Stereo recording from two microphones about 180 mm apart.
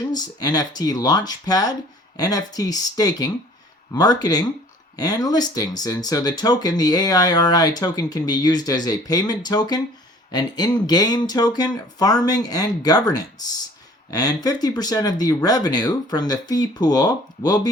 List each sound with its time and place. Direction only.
0.1 s speech: 20° left (ahead or behind)